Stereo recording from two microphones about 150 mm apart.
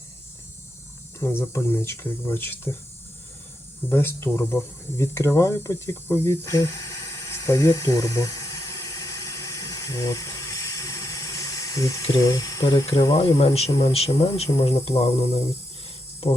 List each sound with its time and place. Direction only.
1.2 s speech: 15° left (ahead or behind)
3.8 s a sound: 15° left (ahead or behind)
12.2 s speech: 20° left (ahead or behind)
12.6 s speech: 35° left (ahead or behind)
13.7 s speech: 20° left (ahead or behind)
13.9 s speech: 40° left (ahead or behind)